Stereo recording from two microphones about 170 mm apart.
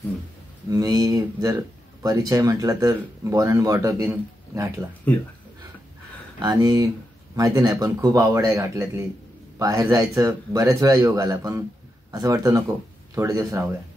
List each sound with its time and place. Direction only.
0.7 s speech: 20° right (ahead or behind)
5.1 s speech: 10° left (ahead or behind)
6.4 s speech: 20° right (ahead or behind)